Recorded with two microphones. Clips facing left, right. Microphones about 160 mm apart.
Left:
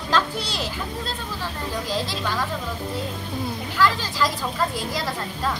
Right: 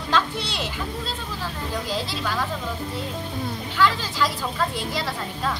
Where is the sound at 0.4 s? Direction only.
40° left (ahead or behind).